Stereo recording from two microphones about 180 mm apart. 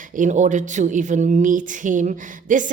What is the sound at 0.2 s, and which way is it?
Speech, 45° right (ahead or behind).